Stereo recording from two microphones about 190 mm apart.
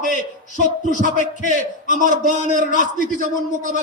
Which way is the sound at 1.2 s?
40° right (ahead or behind).